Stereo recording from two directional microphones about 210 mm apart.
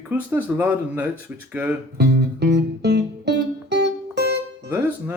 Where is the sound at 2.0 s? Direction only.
55° right (ahead or behind).